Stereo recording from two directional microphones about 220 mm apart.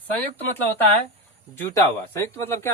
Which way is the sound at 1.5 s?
10° left (ahead or behind).